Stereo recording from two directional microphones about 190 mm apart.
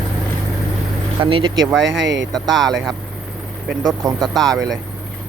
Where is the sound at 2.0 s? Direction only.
75° right (ahead or behind).